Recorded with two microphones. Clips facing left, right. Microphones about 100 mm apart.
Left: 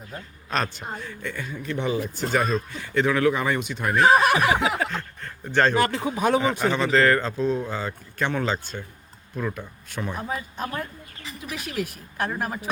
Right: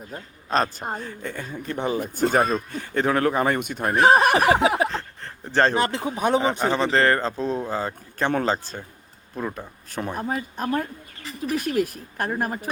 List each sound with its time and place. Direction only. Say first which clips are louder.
0.5 s speech: right 4 dB; 35° right (ahead or behind); by 3.8 s 50° right (ahead or behind)
3.8 s speech: right 1 dB; 35° right (ahead or behind)
4.9 s speech: right 1 dB; 35° right (ahead or behind)
9.9 s speech: right 3 dB; 45° right (ahead or behind)